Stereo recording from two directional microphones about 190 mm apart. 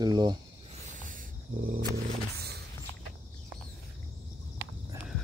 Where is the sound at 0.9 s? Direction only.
45° right (ahead or behind).